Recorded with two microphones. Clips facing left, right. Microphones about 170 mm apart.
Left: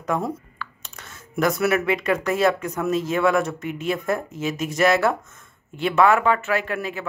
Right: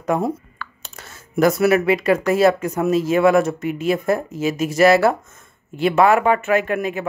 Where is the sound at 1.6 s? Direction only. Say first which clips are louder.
Right 5 dB; 5° right (ahead or behind).